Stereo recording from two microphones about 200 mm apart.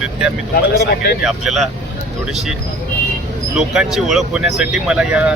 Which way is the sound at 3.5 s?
5° right (ahead or behind).